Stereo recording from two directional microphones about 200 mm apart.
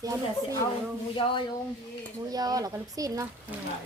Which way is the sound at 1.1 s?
25° left (ahead or behind).